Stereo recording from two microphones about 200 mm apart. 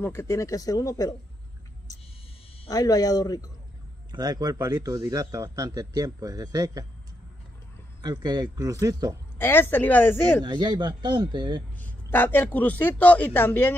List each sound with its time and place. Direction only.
0.0 s a man's voice: 15° left (ahead or behind)
2.7 s speech: 20° left (ahead or behind)
4.1 s a man's voice: 20° right (ahead or behind)
8.0 s a man's voice: 20° right (ahead or behind)
9.4 s a man's voice: 10° left (ahead or behind)
10.4 s a man's voice: 20° right (ahead or behind)
11.8 s a man's voice: 10° left (ahead or behind)